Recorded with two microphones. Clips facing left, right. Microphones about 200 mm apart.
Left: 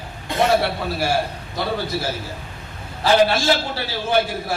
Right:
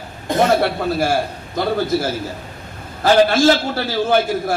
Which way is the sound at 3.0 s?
50° right (ahead or behind).